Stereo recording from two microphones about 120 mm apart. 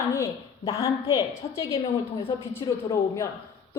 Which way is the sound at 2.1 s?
50° left (ahead or behind).